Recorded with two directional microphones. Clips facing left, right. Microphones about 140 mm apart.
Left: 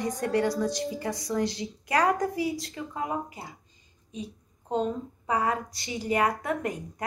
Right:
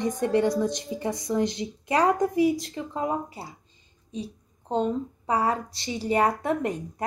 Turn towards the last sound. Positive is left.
turn(degrees=-25)  # may be behind; listen again after turning